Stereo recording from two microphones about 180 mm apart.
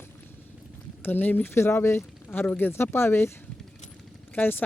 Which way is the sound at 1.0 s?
10° left (ahead or behind).